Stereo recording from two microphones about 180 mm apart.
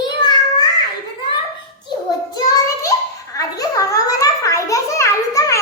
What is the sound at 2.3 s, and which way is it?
Child singing, 20° left (ahead or behind).